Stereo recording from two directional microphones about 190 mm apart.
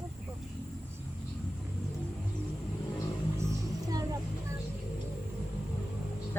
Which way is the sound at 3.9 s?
20° right (ahead or behind).